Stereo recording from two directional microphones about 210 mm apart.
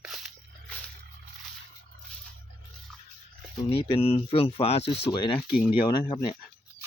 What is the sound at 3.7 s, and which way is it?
Speech, 25° left (ahead or behind).